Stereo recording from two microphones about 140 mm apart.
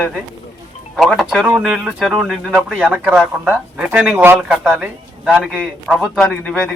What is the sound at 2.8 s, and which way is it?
Speech, 10° right (ahead or behind).